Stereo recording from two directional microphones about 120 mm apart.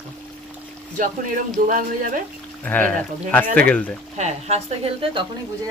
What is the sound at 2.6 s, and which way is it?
Speech, 15° left (ahead or behind).